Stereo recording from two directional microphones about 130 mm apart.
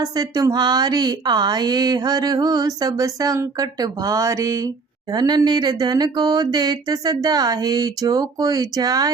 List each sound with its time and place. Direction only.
0.0 s speech: 30° right (ahead or behind)